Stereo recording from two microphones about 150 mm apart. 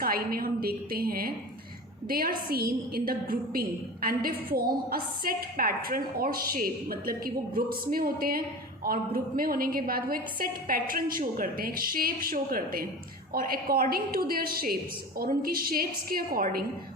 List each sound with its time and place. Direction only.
0.0 s a woman's voice: 80° right